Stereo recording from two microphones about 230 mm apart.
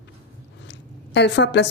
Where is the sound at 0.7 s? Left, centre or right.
Left.